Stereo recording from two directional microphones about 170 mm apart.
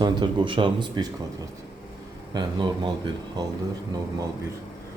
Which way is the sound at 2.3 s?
25° right (ahead or behind).